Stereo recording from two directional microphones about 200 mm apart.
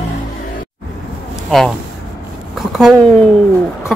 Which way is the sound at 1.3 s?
Centre (ahead or behind).